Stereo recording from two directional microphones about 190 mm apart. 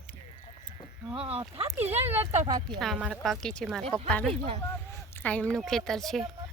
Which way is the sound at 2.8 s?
Centre (ahead or behind).